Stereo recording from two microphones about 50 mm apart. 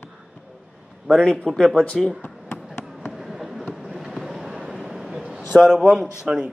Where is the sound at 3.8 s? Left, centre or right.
Centre.